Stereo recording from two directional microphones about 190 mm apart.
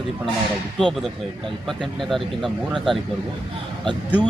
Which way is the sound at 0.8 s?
Centre (ahead or behind).